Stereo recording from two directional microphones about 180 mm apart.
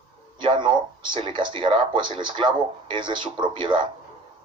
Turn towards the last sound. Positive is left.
turn(degrees=-25)  # may be behind; listen again after turning